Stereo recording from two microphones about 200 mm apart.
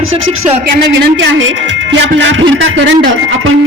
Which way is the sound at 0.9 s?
65° right (ahead or behind).